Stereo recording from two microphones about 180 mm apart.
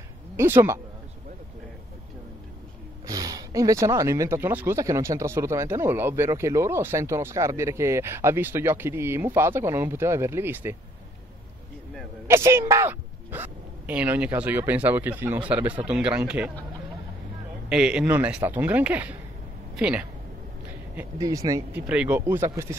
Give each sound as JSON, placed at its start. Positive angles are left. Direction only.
{"t": 0.4, "sound": "speech", "side_deg": -15}
{"t": 3.1, "sound": "speech", "side_deg": -20}
{"t": 12.3, "sound": "speech", "side_deg": -15}
{"t": 17.6, "sound": "speech", "side_deg": -5}
{"t": 21.8, "sound": "speech", "side_deg": -10}